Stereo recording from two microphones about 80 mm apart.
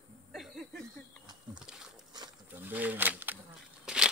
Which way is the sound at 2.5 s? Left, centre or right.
Right.